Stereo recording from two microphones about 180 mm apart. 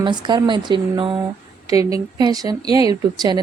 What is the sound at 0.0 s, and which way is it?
A woman's voice, 25° right (ahead or behind).